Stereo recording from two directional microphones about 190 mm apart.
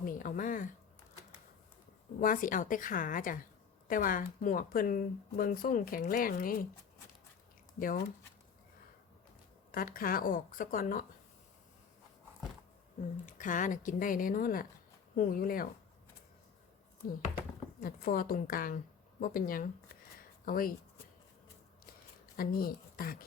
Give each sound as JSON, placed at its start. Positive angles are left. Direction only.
{"t": 0.0, "sound": "speech", "side_deg": 45}
{"t": 2.2, "sound": "speech", "side_deg": 45}
{"t": 7.8, "sound": "speech", "side_deg": 50}
{"t": 9.7, "sound": "speech", "side_deg": 50}
{"t": 13.4, "sound": "speech", "side_deg": 45}
{"t": 17.7, "sound": "speech", "side_deg": 50}
{"t": 22.4, "sound": "speech", "side_deg": 50}